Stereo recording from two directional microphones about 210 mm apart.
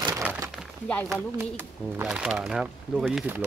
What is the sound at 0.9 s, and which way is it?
Speech, 5° left (ahead or behind).